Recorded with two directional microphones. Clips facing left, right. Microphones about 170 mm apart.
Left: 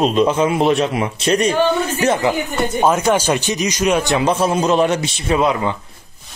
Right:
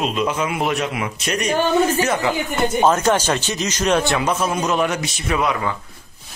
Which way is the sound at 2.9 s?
10° left (ahead or behind).